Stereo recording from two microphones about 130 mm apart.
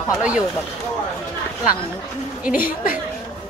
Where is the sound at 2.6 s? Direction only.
90° left.